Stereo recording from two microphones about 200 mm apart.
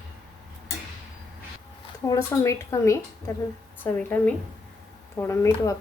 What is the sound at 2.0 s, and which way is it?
A woman's voice, 15° left (ahead or behind).